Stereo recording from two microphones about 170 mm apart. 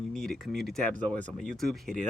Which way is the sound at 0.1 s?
Centre (ahead or behind).